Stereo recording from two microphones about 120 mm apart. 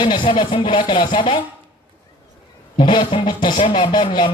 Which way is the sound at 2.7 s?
40° left (ahead or behind).